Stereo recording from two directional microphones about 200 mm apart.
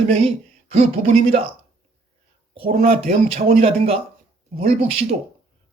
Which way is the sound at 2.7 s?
45° right (ahead or behind).